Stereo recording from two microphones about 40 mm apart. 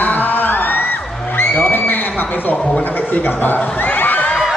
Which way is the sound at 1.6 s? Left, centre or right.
Left.